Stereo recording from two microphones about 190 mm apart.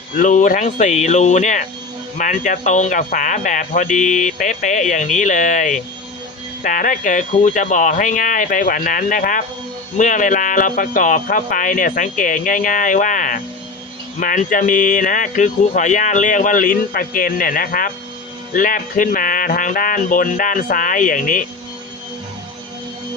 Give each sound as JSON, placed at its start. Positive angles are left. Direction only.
{"t": 0.2, "sound": "speech", "side_deg": 40}